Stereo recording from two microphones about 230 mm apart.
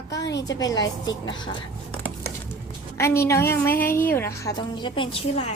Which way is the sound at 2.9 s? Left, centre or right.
Centre.